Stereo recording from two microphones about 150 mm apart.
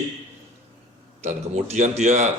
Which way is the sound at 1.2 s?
50° right (ahead or behind).